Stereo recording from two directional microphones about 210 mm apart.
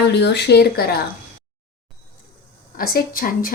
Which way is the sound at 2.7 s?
45° left (ahead or behind).